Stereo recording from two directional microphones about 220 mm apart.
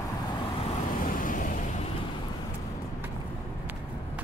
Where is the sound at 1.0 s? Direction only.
40° left (ahead or behind).